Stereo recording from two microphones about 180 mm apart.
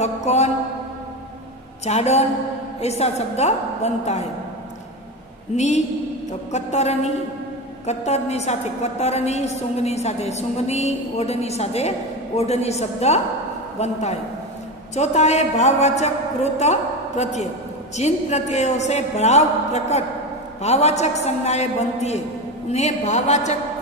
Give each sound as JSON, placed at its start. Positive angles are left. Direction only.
{"t": 0.0, "sound": "mantra", "side_deg": 40}
{"t": 1.9, "sound": "a woman's voice", "side_deg": 35}
{"t": 6.5, "sound": "a woman's voice", "side_deg": 40}
{"t": 15.0, "sound": "a woman's voice", "side_deg": 40}